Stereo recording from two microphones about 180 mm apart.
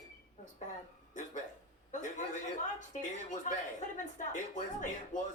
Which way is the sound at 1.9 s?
45° left (ahead or behind).